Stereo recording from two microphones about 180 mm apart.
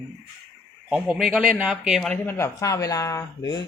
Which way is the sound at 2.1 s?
15° left (ahead or behind).